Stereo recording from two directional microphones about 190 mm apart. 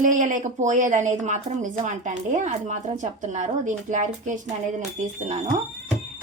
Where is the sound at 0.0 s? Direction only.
40° right (ahead or behind).